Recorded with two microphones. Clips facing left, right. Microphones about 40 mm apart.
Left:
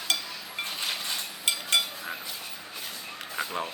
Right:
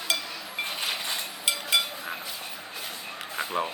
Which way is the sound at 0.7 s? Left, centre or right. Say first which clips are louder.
Right 1 dB; centre.